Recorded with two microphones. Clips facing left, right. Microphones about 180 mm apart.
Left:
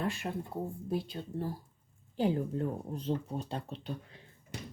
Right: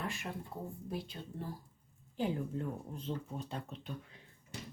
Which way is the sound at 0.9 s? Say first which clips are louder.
Left 7 dB; 35° left (ahead or behind).